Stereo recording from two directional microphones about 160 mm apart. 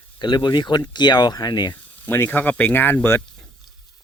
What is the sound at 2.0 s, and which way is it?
Speech, 15° left (ahead or behind).